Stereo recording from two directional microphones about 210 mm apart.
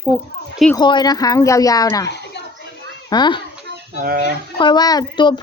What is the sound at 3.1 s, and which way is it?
Speech, 20° left (ahead or behind).